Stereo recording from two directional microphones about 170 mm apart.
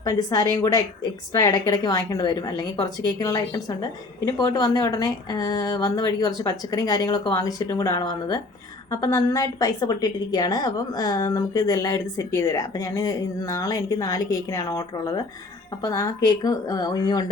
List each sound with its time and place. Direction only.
0.0 s a woman's voice: 20° left (ahead or behind)